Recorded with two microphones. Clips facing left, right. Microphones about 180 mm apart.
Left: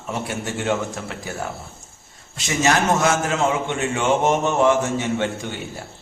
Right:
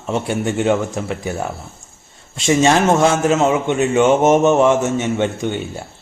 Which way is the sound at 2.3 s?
25° right (ahead or behind).